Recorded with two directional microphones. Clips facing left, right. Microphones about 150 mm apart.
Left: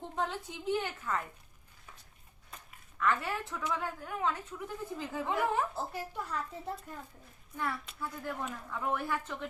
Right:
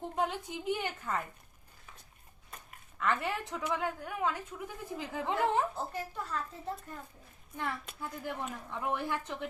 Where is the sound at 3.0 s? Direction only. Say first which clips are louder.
Left 1 dB; 20° right (ahead or behind).